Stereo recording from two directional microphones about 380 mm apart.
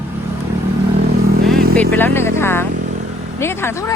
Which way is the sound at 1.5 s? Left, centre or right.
Centre.